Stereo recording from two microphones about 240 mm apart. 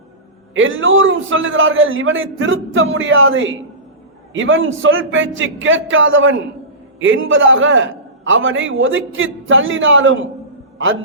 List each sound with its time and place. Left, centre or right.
0.5 s a man's voice: right